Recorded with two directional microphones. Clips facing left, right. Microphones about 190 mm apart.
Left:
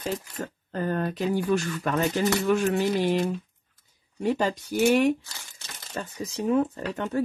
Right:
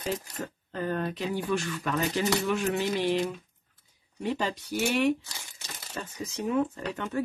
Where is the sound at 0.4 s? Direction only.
45° left (ahead or behind).